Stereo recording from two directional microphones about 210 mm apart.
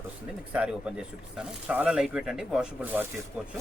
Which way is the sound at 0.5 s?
5° right (ahead or behind).